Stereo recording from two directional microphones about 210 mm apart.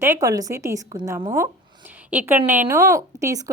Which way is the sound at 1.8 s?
10° right (ahead or behind).